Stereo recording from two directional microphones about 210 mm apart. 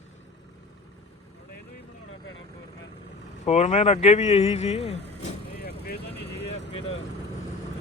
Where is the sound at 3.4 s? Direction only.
30° left (ahead or behind).